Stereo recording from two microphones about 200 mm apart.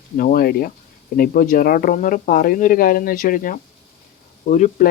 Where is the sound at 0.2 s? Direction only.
45° left (ahead or behind).